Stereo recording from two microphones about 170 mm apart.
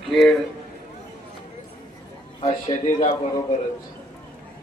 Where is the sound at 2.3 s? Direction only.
35° left (ahead or behind).